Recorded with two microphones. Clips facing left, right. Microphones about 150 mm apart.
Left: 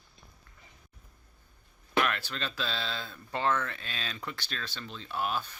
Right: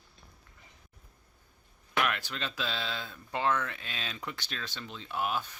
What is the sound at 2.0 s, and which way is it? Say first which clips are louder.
Speech: left 1 dB; 15° right (ahead or behind).